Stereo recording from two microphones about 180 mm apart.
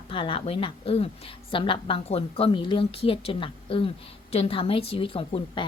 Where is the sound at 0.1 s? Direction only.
30° left (ahead or behind).